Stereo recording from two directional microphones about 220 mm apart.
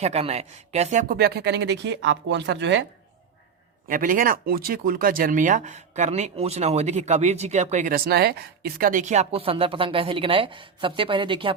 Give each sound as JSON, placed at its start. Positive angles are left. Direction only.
{"t": 0.0, "sound": "speech", "side_deg": -30}
{"t": 3.8, "sound": "speech", "side_deg": -40}